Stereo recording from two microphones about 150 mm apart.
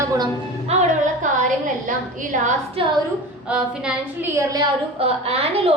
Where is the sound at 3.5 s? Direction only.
5° right (ahead or behind).